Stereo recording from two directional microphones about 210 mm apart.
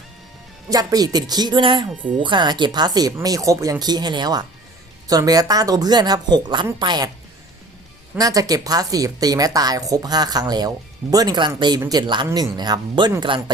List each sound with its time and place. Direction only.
0.7 s speech: 15° right (ahead or behind)
8.1 s speech: 15° right (ahead or behind)